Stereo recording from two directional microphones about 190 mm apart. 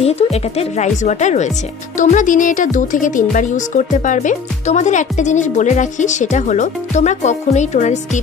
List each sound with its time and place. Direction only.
0.0 s speech: 35° left (ahead or behind)